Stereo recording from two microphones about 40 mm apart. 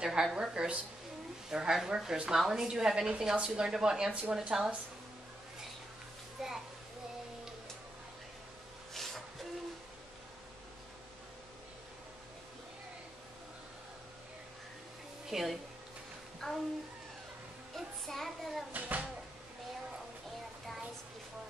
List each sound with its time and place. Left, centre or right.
0.0 s a woman's voice: centre
6.4 s a woman's voice: centre
8.9 s music: centre
15.2 s speech: centre
16.4 s child singing: centre
17.7 s child singing: centre
18.7 s a child's voice: right